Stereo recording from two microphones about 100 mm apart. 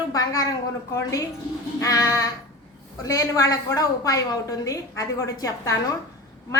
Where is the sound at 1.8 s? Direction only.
35° left (ahead or behind).